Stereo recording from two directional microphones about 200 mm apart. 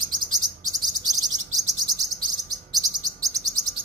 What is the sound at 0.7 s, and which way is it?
Chirp, 20° right (ahead or behind).